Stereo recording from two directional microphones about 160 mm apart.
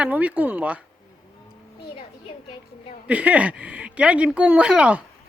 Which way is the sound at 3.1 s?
10° right (ahead or behind).